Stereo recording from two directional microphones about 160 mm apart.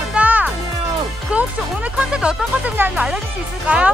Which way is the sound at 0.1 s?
10° right (ahead or behind).